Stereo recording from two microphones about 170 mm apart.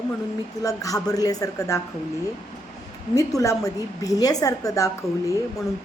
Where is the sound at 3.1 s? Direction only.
20° left (ahead or behind).